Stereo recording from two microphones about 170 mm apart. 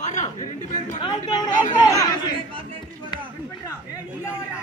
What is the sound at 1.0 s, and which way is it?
Speech, 25° left (ahead or behind).